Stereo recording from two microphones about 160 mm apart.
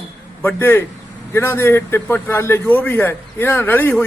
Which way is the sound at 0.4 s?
15° left (ahead or behind).